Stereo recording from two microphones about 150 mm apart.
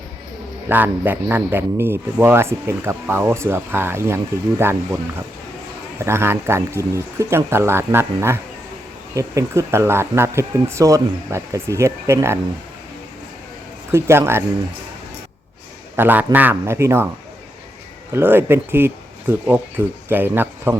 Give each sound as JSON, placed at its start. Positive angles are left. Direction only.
{"t": 0.7, "sound": "speech", "side_deg": -10}
{"t": 6.0, "sound": "speech", "side_deg": -15}
{"t": 13.9, "sound": "speech", "side_deg": -15}
{"t": 16.0, "sound": "speech", "side_deg": -10}
{"t": 18.1, "sound": "speech", "side_deg": -15}